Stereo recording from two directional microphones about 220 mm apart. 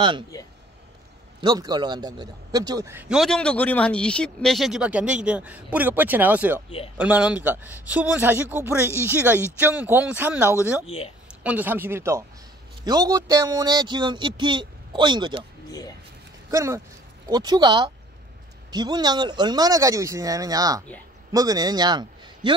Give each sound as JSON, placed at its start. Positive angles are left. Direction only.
{"t": 1.4, "sound": "a man's voice", "side_deg": -20}
{"t": 10.9, "sound": "speech", "side_deg": 25}
{"t": 11.4, "sound": "a man's voice", "side_deg": -10}
{"t": 16.4, "sound": "a man's voice", "side_deg": -15}